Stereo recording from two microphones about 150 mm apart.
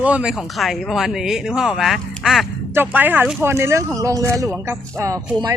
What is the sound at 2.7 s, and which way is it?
Speech, 15° right (ahead or behind).